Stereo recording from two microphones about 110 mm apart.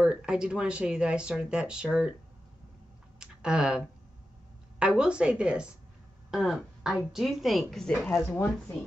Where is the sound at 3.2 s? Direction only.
5° right (ahead or behind).